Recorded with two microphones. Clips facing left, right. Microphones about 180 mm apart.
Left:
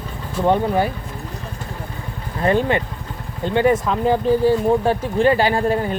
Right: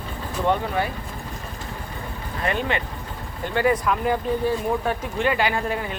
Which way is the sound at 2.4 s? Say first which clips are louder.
Left 7 dB; 30° left (ahead or behind).